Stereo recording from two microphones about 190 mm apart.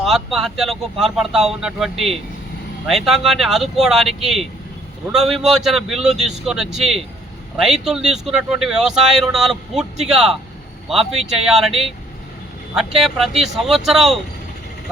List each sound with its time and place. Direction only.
0.0 s speech: centre (ahead or behind)
12.7 s speech: centre (ahead or behind)